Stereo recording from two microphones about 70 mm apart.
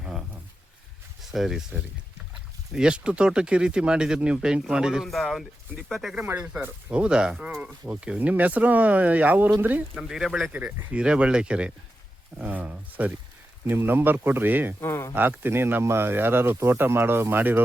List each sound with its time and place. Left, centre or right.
0.0 s a sound: centre
1.2 s speech: centre
2.7 s speech: centre
5.0 s speech: centre
6.3 s speech: centre
9.9 s speech: centre
10.5 s speech: right
10.9 s speech: centre
13.7 s speech: right
14.8 s speech: left
15.1 s speech: right